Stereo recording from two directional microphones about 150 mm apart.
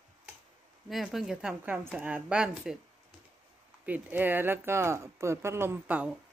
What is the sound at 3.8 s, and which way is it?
Speech, 10° right (ahead or behind).